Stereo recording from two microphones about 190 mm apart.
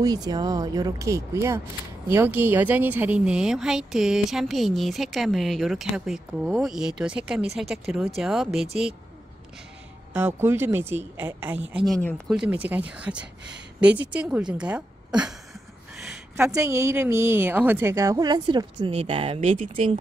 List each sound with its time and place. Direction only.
0.0 s a woman's voice: 20° right (ahead or behind); by 8.6 s centre (ahead or behind)
10.1 s a woman's voice: 10° right (ahead or behind); by 12.4 s 5° left (ahead or behind)
12.4 s a woman's voice: 5° right (ahead or behind); by 20.0 s 30° right (ahead or behind)